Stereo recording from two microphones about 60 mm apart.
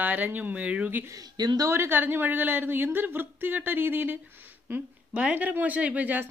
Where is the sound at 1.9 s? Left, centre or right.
Right.